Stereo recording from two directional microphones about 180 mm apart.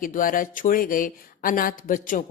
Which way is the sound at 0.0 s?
50° left (ahead or behind).